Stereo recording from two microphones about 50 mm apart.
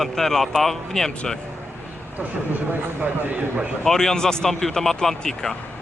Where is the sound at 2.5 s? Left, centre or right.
Right.